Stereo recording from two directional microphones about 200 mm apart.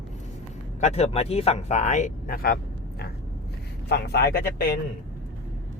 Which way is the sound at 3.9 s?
55° left (ahead or behind).